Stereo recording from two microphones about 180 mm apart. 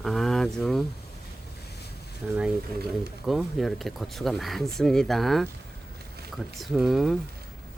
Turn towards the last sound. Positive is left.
turn(degrees=0)  # may be behind; listen again after turning